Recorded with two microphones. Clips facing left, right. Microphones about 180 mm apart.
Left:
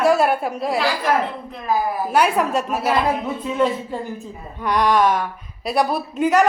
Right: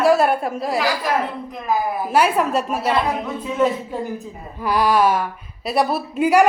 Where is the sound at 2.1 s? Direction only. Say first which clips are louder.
Right 1 dB; 5° right (ahead or behind).